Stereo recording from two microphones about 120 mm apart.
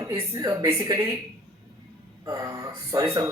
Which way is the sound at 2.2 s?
30° right (ahead or behind).